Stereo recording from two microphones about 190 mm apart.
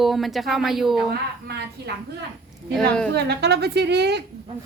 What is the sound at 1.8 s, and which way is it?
Speech, 60° right (ahead or behind).